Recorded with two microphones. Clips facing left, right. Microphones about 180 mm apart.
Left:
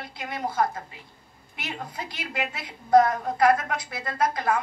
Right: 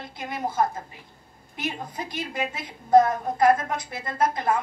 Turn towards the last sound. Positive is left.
turn(degrees=-25)  # may be behind; listen again after turning